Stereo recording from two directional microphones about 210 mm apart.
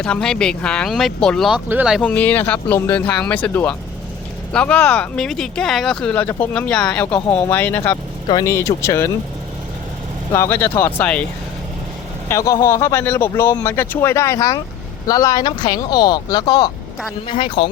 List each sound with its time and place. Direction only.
0.0 s a man's voice: 5° left (ahead or behind)
10.3 s a man's voice: 10° left (ahead or behind)
12.3 s a man's voice: 15° left (ahead or behind)